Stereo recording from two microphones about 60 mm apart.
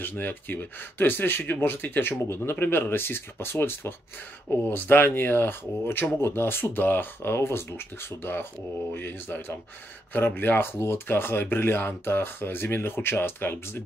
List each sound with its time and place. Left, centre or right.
0.0 s speech: left